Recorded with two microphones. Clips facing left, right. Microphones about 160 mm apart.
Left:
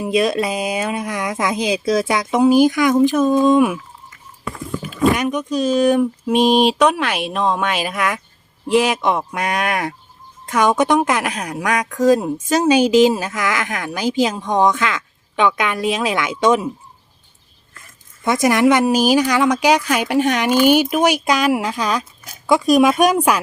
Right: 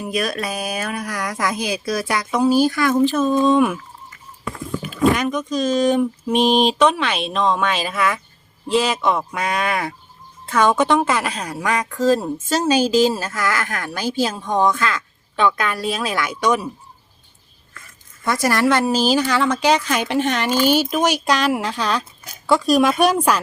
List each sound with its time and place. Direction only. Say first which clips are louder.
0.0 s speech: left 6 dB; 25° left (ahead or behind); by 3.8 s 10° left (ahead or behind)
5.1 s speech: left 1 dB; 10° left (ahead or behind)
18.3 s speech: left 4 dB; 20° left (ahead or behind)